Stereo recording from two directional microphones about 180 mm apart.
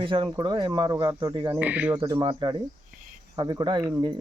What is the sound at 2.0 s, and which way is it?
Speech, 25° right (ahead or behind).